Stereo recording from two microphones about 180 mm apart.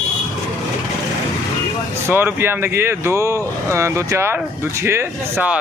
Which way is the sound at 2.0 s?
10° right (ahead or behind).